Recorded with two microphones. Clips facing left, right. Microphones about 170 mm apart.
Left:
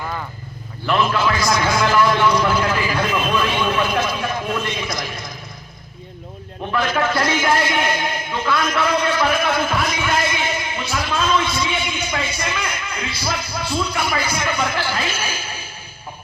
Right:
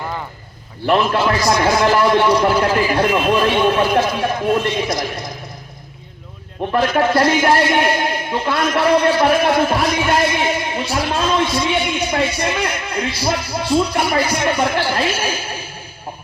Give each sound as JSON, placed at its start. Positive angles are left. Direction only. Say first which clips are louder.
{"t": 0.9, "sound": "a man's voice", "louder": "right 3 dB", "side_deg": -40}
{"t": 6.7, "sound": "a man's voice", "louder": "right 5 dB", "side_deg": -35}
{"t": 11.9, "sound": "a sound", "louder": "right 6 dB", "side_deg": -35}
{"t": 13.1, "sound": "a man's voice", "louder": "right 5 dB", "side_deg": -35}